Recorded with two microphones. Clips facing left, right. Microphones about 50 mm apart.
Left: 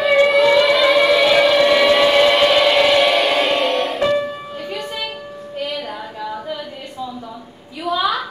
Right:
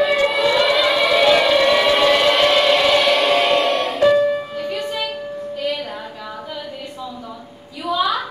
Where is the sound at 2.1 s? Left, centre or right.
Centre.